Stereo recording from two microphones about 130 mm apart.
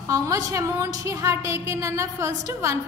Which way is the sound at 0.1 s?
25° right (ahead or behind).